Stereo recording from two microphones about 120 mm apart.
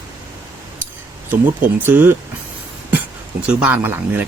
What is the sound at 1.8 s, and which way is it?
Speech, 15° right (ahead or behind).